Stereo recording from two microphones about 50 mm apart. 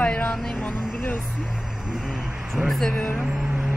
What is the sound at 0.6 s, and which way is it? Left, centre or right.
Vehicle, left.